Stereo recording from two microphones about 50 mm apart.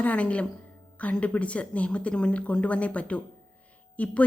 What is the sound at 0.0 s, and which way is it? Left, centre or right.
A woman's voice, left.